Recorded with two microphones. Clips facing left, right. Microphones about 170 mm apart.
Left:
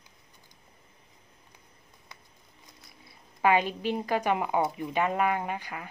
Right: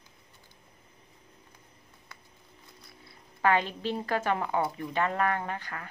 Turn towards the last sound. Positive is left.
turn(degrees=15)  # may be behind; listen again after turning